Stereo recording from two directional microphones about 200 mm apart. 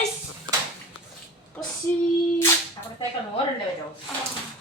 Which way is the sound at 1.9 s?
10° left (ahead or behind).